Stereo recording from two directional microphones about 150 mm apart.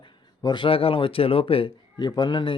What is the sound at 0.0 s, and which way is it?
Speech, 30° left (ahead or behind).